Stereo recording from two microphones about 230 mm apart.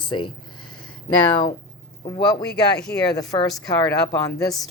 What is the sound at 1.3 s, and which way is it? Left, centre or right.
A woman's voice, centre.